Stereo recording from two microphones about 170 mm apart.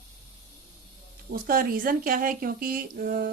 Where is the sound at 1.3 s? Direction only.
60° right (ahead or behind).